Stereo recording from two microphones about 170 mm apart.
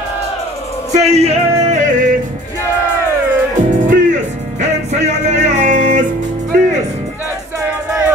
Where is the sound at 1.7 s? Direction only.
50° right (ahead or behind).